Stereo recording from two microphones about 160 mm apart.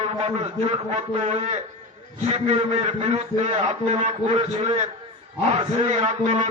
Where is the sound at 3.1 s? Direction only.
40° right (ahead or behind).